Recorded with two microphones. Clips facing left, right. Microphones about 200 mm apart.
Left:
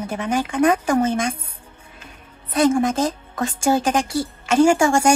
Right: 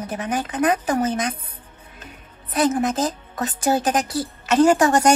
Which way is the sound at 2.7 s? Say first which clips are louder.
Left 2 dB; 10° left (ahead or behind).